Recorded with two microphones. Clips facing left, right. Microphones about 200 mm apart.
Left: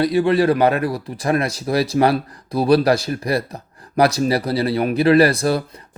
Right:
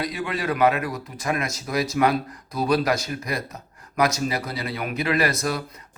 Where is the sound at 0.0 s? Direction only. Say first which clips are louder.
Left 12 dB; 30° left (ahead or behind).